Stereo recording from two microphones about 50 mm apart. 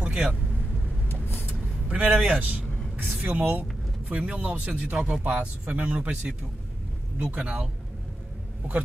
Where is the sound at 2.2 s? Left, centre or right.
Right.